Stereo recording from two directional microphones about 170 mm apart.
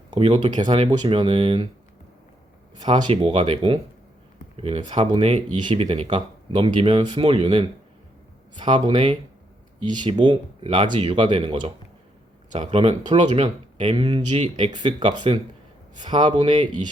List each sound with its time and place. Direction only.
0.1 s speech: 40° right (ahead or behind)
0.5 s speech: 25° right (ahead or behind)
2.9 s speech: 35° right (ahead or behind)